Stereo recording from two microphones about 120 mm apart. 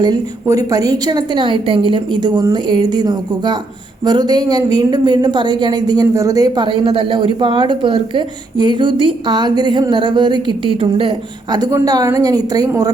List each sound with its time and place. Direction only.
0.0 s a woman's voice: 30° right (ahead or behind)
11.5 s a woman's voice: 35° right (ahead or behind)